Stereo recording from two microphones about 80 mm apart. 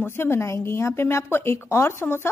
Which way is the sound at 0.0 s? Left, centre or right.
Left.